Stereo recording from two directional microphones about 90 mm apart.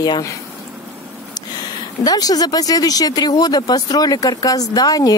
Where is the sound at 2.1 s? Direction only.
45° left (ahead or behind).